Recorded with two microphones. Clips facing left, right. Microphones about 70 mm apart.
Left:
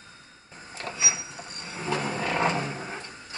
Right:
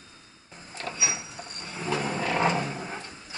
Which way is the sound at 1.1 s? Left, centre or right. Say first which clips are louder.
Even; centre.